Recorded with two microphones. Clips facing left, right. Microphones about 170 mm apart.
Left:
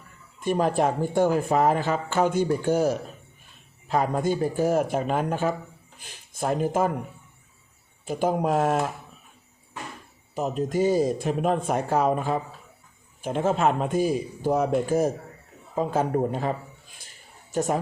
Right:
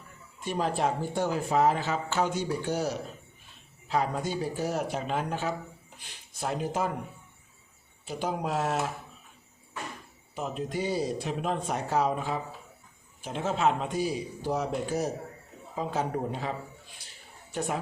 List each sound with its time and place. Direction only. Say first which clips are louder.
0.3 s speech: left 7 dB; 50° left (ahead or behind)
8.0 s speech: left 7 dB; 50° left (ahead or behind)
10.3 s speech: left 7 dB; 40° left (ahead or behind)
17.0 s a sound: left 1 dB; 45° left (ahead or behind)